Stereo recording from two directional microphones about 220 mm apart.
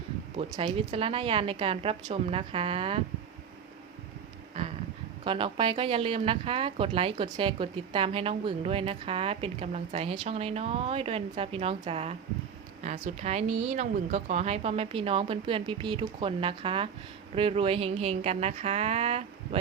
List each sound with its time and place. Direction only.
0.3 s speech: 25° right (ahead or behind)
5.2 s speech: 25° right (ahead or behind)